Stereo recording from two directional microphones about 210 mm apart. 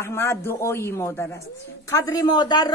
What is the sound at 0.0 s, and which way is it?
A man's voice, 10° left (ahead or behind).